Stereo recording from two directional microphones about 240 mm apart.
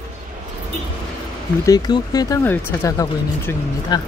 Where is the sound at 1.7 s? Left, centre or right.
Centre.